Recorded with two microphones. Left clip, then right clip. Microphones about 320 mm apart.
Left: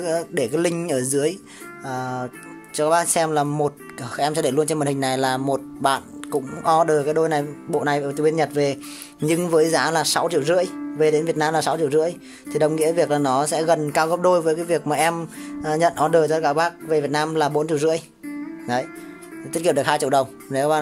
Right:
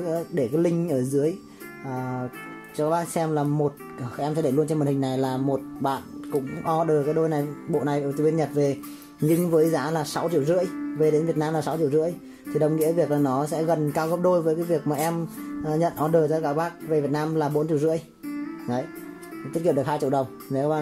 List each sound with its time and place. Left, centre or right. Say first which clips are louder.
0.0 s speech: left 3 dB; left
8.1 s speech: left 3 dB; left
9.2 s speech: left 2 dB; left
14.4 s speech: left 3 dB; left
19.6 s speech: left 4 dB; left